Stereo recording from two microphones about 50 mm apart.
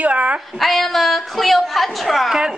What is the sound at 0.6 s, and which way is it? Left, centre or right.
A woman's voice, centre.